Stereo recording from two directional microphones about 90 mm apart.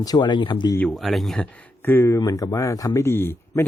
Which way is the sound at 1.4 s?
15° left (ahead or behind).